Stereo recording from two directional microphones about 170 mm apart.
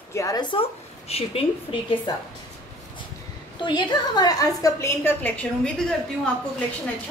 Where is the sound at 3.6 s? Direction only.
25° left (ahead or behind); by 5.7 s 10° left (ahead or behind).